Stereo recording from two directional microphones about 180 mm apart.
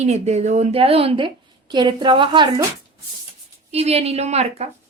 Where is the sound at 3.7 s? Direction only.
35° right (ahead or behind).